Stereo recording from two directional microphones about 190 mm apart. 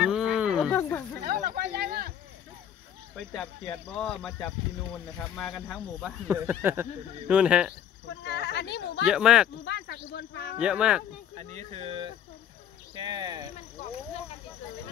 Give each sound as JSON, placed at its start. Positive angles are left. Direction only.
{"t": 0.0, "sound": "a sound", "side_deg": 0}
{"t": 0.7, "sound": "chatter", "side_deg": 10}
{"t": 1.2, "sound": "a sound", "side_deg": -50}
{"t": 3.2, "sound": "speech", "side_deg": 5}
{"t": 6.2, "sound": "speech", "side_deg": -10}
{"t": 8.2, "sound": "speech", "side_deg": 65}
{"t": 9.0, "sound": "speech", "side_deg": 0}
{"t": 9.7, "sound": "speech", "side_deg": 65}
{"t": 10.6, "sound": "speech", "side_deg": -5}
{"t": 11.3, "sound": "speech", "side_deg": -35}